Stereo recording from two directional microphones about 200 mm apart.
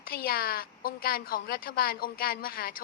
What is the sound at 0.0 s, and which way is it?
A woman's voice, 50° left (ahead or behind).